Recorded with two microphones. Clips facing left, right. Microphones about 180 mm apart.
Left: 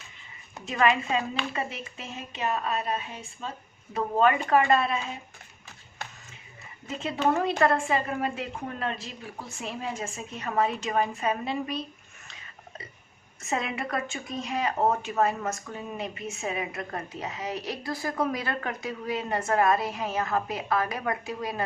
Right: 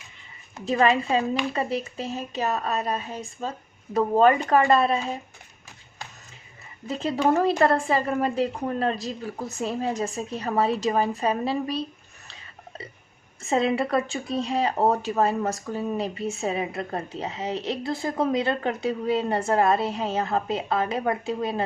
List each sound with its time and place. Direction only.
0.6 s a woman's voice: 35° right (ahead or behind)
6.8 s a woman's voice: 35° right (ahead or behind)
12.3 s a sound: 30° right (ahead or behind)
13.4 s speech: 30° right (ahead or behind)